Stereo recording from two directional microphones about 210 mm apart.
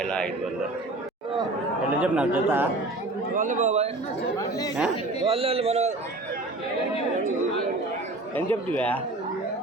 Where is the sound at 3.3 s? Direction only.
40° right (ahead or behind).